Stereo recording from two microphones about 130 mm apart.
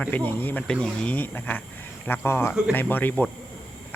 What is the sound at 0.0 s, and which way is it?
Speech, 15° left (ahead or behind).